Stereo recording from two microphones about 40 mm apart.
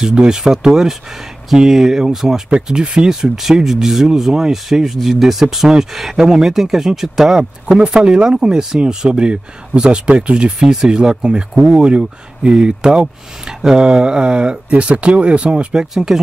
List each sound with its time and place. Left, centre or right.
0.0 s speech: right
2.7 s speech: right
7.8 s speech: right
15.7 s speech: centre